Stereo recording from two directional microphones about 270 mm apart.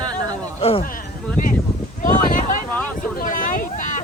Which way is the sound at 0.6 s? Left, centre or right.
Left.